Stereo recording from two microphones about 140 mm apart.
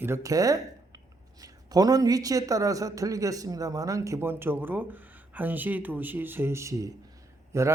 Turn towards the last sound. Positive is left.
turn(degrees=-20)  # may be behind; listen again after turning